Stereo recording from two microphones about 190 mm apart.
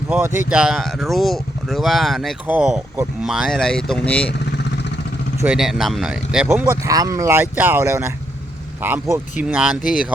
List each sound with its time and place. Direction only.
0.1 s speech: 10° right (ahead or behind); by 4.3 s 5° left (ahead or behind)
4.3 s vehicle: 65° left (ahead or behind)
5.4 s speech: 5° right (ahead or behind)
9.8 s speech: 45° left (ahead or behind)